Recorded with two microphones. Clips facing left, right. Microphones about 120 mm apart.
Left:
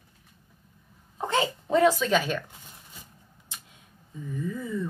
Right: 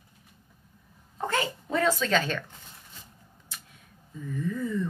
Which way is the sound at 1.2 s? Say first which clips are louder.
Left 3 dB; 20° left (ahead or behind).